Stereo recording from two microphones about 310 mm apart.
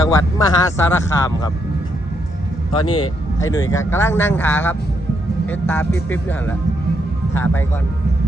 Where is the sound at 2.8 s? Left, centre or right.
Left.